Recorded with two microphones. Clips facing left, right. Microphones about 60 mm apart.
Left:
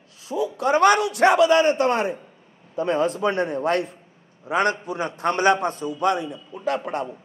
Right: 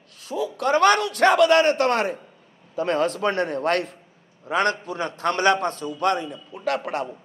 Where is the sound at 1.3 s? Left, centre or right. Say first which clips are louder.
Right 1 dB; right.